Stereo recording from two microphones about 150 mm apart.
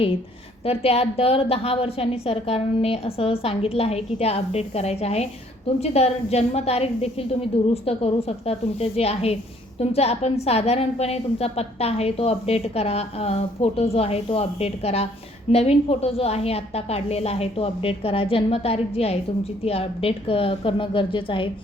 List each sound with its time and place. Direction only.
0.6 s a woman's voice: 40° left (ahead or behind)